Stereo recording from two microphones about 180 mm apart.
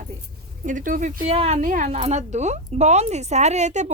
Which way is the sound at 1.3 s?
35° right (ahead or behind).